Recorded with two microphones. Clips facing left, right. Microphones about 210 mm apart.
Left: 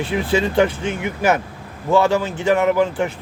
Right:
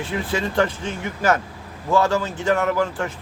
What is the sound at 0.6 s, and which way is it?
Speech, 60° left (ahead or behind).